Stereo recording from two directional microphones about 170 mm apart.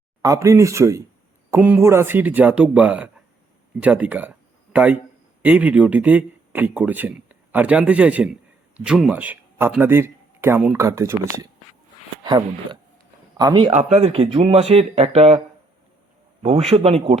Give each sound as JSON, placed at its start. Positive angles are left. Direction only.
{"t": 0.2, "sound": "a man's voice", "side_deg": -20}
{"t": 12.2, "sound": "a man's voice", "side_deg": -25}
{"t": 13.7, "sound": "speech", "side_deg": -40}
{"t": 16.4, "sound": "speech", "side_deg": -35}